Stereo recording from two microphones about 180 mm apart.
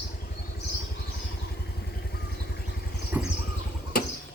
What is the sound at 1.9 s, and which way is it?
Vehicle, 60° left (ahead or behind).